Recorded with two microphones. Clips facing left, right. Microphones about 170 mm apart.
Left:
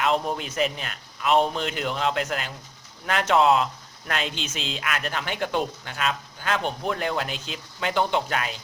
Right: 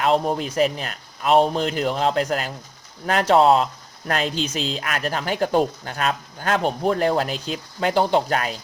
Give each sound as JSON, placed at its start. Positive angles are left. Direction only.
{"t": 0.0, "sound": "speech", "side_deg": -35}